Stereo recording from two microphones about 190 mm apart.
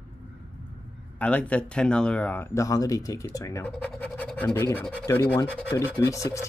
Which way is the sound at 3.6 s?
5° left (ahead or behind).